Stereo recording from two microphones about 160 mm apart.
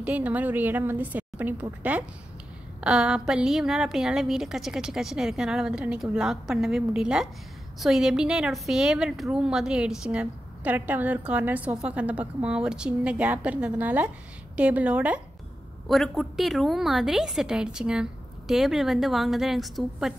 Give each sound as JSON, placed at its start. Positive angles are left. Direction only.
{"t": 0.0, "sound": "a woman's voice", "side_deg": -10}